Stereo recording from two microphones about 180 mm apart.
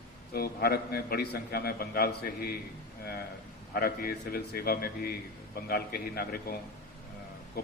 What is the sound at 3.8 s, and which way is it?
Mantra, 55° left (ahead or behind).